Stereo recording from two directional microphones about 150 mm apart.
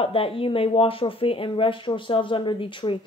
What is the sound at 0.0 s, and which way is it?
Speech, 40° left (ahead or behind).